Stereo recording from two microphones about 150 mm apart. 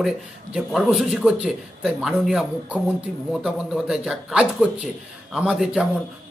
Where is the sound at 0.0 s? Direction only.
5° right (ahead or behind).